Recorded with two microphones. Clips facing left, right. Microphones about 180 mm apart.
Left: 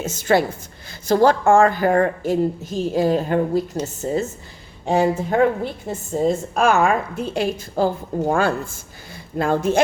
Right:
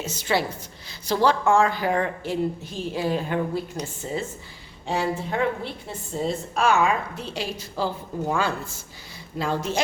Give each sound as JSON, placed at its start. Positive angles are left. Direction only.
{"t": 0.0, "sound": "a woman's voice", "side_deg": 50}